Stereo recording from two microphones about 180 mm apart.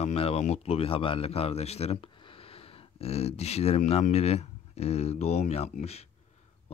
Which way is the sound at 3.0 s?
35° left (ahead or behind).